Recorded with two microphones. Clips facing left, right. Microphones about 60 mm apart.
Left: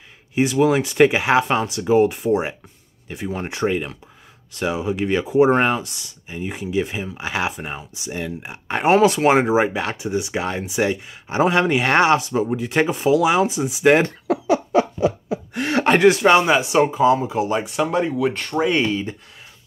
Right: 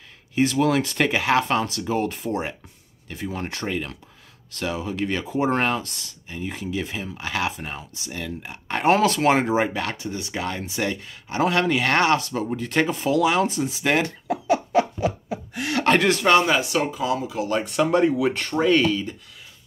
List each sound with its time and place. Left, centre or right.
0.3 s speech: centre
15.8 s speech: centre; by 17.5 s left
17.6 s speech: centre
18.6 s speech: centre